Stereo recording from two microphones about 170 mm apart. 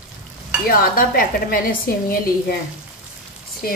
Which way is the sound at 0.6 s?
60° left (ahead or behind).